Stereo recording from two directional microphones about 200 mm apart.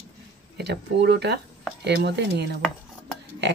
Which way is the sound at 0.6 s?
55° right (ahead or behind).